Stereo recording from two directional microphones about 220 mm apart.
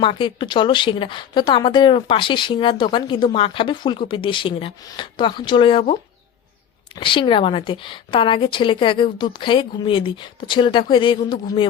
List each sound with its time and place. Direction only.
0.0 s a woman's voice: 25° left (ahead or behind)